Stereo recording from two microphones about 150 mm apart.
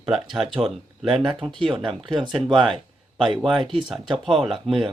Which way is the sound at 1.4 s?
35° right (ahead or behind).